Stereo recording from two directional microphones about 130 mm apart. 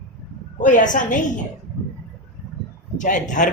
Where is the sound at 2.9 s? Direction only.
75° left (ahead or behind).